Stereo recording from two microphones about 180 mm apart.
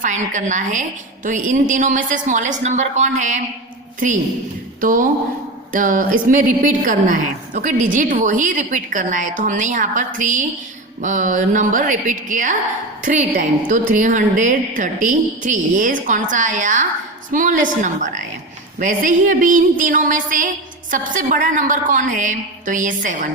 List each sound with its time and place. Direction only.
0.0 s a woman's voice: 45° right (ahead or behind)
4.8 s a woman's voice: 50° right (ahead or behind)